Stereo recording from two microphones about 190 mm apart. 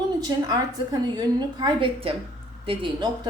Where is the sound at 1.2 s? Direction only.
25° right (ahead or behind).